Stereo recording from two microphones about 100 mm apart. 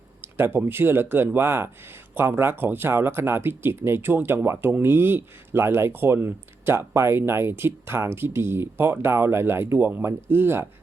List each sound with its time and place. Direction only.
0.2 s speech: 20° right (ahead or behind)